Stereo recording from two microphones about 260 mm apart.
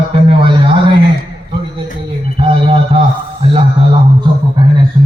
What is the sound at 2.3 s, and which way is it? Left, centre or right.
Speech, right.